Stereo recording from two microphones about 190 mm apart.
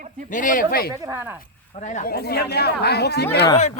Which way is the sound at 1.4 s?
40° left (ahead or behind).